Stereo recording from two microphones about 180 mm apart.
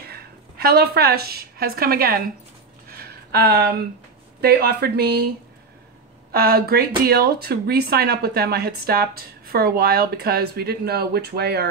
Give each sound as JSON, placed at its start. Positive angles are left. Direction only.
{"t": 0.0, "sound": "a woman's voice", "side_deg": -60}
{"t": 2.9, "sound": "a sound", "side_deg": -60}
{"t": 4.4, "sound": "speech", "side_deg": -65}
{"t": 6.3, "sound": "speech", "side_deg": -60}